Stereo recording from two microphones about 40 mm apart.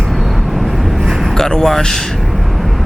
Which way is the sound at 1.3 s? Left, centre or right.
Centre.